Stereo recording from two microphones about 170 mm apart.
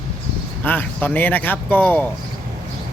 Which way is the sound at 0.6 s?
10° left (ahead or behind).